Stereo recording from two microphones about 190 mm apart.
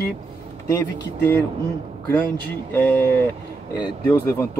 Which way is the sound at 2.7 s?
10° left (ahead or behind).